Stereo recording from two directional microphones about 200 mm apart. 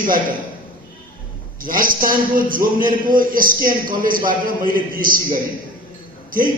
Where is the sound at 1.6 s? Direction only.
45° right (ahead or behind).